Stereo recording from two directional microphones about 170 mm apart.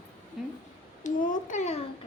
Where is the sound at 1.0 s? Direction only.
50° left (ahead or behind).